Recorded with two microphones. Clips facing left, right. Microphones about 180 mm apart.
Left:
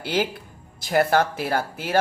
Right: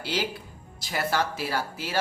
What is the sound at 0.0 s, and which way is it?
A man's voice, 55° left (ahead or behind).